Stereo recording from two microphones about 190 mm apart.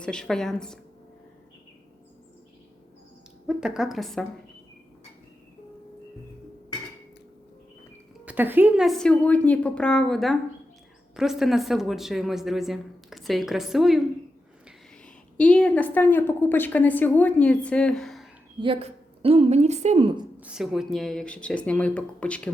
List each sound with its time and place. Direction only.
0.0 s speech: 5° left (ahead or behind)
3.4 s speech: 5° right (ahead or behind)
8.2 s speech: 10° right (ahead or behind)
15.4 s a woman's voice: 5° left (ahead or behind)
18.6 s speech: 30° right (ahead or behind)
20.3 s speech: 5° right (ahead or behind)